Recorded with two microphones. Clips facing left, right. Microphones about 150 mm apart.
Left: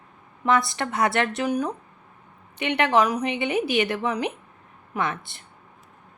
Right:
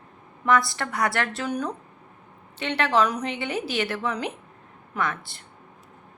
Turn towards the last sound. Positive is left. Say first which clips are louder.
# left 1 dB
turn(degrees=20)  # may be behind; listen again after turning